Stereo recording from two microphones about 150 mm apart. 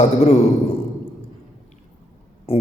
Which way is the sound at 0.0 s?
45° left (ahead or behind).